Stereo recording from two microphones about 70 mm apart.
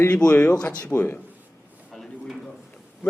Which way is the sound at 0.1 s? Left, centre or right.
Centre.